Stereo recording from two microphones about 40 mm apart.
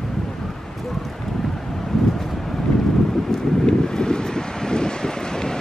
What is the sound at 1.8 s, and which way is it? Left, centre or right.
Vehicle, centre.